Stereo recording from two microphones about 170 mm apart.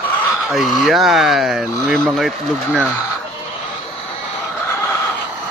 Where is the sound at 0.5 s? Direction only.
Centre (ahead or behind).